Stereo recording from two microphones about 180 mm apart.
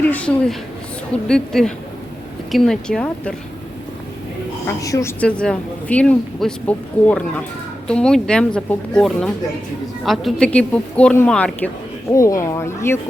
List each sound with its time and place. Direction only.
0.1 s a woman's voice: 5° left (ahead or behind)
4.8 s a woman's voice: 15° left (ahead or behind)
12.1 s a woman's voice: 15° left (ahead or behind)